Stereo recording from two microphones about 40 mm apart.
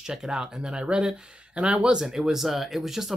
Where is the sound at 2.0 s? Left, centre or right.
Centre.